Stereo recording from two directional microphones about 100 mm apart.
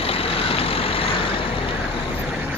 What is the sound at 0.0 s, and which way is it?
Vehicle, 70° left (ahead or behind).